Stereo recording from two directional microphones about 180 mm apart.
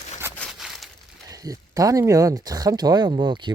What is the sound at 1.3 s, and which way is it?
Speech, 20° right (ahead or behind).